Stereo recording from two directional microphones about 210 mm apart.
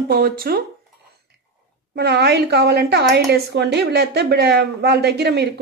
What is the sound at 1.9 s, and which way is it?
Speech, 50° right (ahead or behind).